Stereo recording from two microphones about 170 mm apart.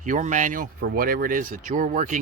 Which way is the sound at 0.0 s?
45° right (ahead or behind).